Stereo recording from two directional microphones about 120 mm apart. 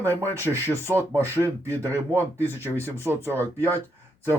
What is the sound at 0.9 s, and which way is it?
Speech, 20° right (ahead or behind).